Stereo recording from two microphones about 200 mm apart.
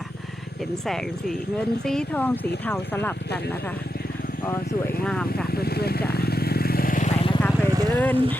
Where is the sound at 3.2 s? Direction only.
55° left (ahead or behind).